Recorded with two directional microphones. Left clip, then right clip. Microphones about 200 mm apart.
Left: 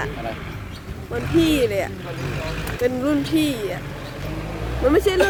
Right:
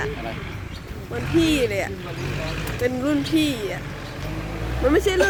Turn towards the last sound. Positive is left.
turn(degrees=0)  # may be behind; listen again after turning